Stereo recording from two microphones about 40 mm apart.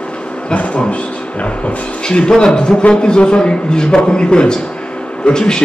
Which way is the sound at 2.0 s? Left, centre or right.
Left.